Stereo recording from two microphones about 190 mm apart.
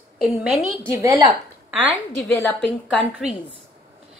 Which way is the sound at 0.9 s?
15° right (ahead or behind).